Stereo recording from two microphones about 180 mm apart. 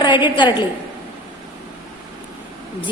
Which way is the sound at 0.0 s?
25° left (ahead or behind).